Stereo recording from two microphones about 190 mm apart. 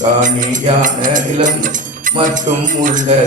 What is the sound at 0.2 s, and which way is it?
Music, 45° right (ahead or behind).